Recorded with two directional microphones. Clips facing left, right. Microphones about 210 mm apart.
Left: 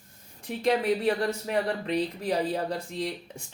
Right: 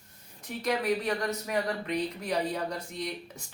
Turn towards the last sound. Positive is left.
turn(degrees=30)  # may be behind; listen again after turning